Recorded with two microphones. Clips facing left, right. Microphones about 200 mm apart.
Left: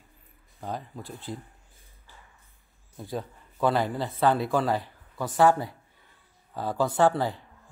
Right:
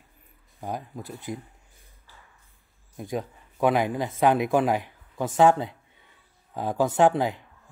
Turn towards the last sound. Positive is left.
turn(degrees=-15)  # may be behind; listen again after turning